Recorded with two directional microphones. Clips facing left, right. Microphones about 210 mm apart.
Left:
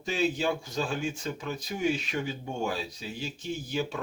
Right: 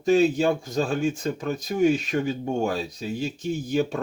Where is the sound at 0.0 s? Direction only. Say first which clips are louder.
Right 9 dB; 45° right (ahead or behind).